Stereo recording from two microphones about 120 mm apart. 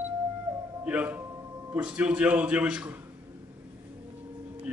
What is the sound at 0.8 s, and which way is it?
A man's voice, 10° right (ahead or behind).